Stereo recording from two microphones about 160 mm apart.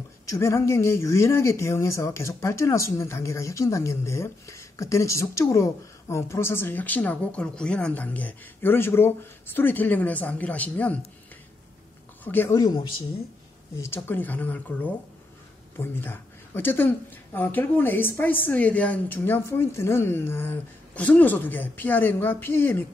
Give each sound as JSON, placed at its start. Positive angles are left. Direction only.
{"t": 0.3, "sound": "speech", "side_deg": 15}
{"t": 12.3, "sound": "speech", "side_deg": 15}
{"t": 12.5, "sound": "speech", "side_deg": 25}
{"t": 13.7, "sound": "speech", "side_deg": 15}